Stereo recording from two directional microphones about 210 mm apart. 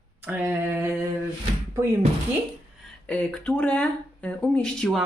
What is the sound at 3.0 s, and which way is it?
Speech, 5° left (ahead or behind).